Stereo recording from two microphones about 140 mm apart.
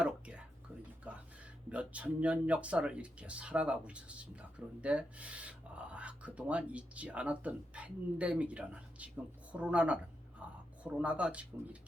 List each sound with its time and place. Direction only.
0.0 s a sound: 10° right (ahead or behind)
1.1 s music: 10° right (ahead or behind)
1.7 s speech: 10° right (ahead or behind)
10.4 s whispering: 10° right (ahead or behind)
10.8 s speech: 10° right (ahead or behind)